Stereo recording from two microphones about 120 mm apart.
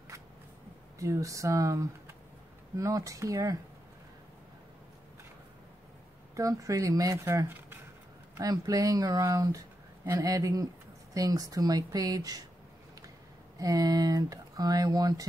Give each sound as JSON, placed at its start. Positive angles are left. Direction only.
{"t": 0.9, "sound": "speech", "side_deg": -25}
{"t": 6.3, "sound": "speech", "side_deg": -30}
{"t": 8.4, "sound": "speech", "side_deg": -30}
{"t": 13.6, "sound": "speech", "side_deg": -30}